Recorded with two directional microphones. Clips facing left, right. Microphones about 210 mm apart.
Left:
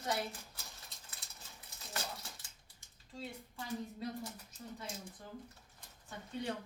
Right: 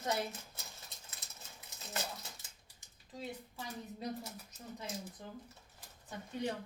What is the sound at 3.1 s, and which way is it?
Speech, 20° right (ahead or behind).